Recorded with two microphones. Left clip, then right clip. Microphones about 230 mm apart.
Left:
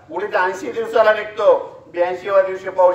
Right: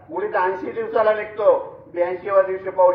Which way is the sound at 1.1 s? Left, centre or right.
Left.